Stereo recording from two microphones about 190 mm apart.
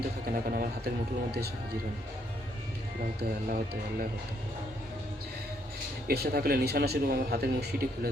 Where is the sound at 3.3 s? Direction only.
50° right (ahead or behind).